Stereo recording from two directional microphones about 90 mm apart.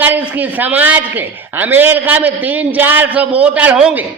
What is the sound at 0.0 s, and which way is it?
A woman's voice, 20° right (ahead or behind).